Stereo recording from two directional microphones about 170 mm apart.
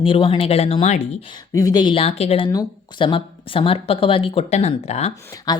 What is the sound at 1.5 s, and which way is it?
Speech, 20° left (ahead or behind).